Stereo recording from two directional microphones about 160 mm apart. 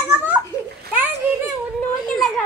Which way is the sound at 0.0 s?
10° right (ahead or behind).